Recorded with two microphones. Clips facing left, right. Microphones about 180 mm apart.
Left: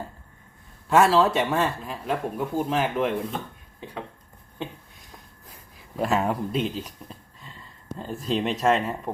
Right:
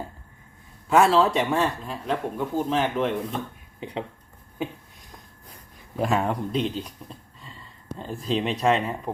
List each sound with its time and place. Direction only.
0.9 s a man's voice: centre (ahead or behind)
3.8 s speech: 20° right (ahead or behind)
4.6 s a sound: 10° right (ahead or behind)
6.0 s a man's voice: centre (ahead or behind)